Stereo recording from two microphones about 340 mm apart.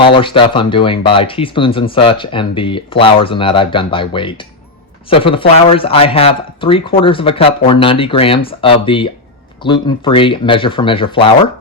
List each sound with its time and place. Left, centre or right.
0.0 s speech: centre